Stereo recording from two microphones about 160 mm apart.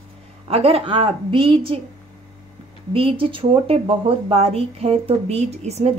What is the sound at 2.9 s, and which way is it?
A woman's voice, 35° right (ahead or behind).